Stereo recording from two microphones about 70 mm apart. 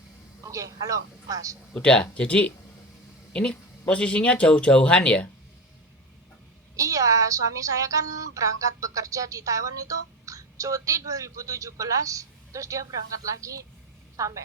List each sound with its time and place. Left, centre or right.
0.4 s a woman's voice: right
1.7 s speech: centre
6.7 s a woman's voice: right